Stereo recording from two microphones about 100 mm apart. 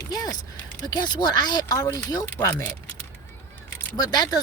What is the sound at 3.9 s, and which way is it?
Speech, 40° left (ahead or behind).